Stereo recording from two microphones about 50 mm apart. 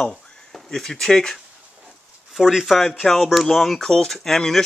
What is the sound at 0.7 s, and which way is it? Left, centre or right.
Speech, centre.